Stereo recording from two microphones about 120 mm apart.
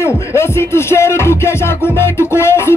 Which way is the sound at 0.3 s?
20° left (ahead or behind).